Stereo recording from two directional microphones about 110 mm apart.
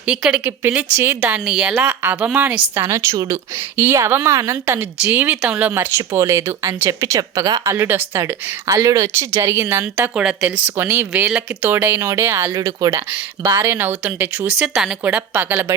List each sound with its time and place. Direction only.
0.0 s speech: 10° right (ahead or behind)
1.7 s speech: 20° right (ahead or behind)
5.0 s speech: 10° right (ahead or behind)
10.2 s speech: 10° right (ahead or behind)